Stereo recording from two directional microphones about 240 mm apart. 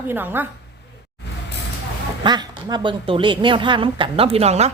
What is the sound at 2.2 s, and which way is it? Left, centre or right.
A woman's voice, centre.